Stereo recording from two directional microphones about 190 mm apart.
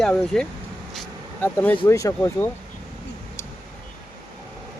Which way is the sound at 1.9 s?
15° left (ahead or behind).